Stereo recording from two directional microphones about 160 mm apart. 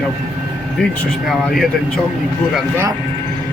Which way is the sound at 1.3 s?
Centre (ahead or behind).